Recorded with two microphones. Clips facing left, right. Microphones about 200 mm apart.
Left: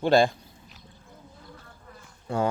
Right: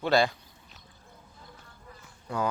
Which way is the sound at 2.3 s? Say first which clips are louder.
Left 4 dB; 25° left (ahead or behind).